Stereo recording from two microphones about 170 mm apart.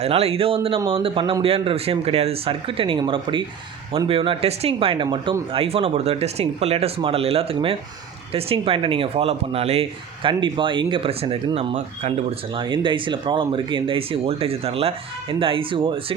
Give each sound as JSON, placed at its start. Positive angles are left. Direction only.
{"t": 0.0, "sound": "speech", "side_deg": -35}
{"t": 12.5, "sound": "speech", "side_deg": -30}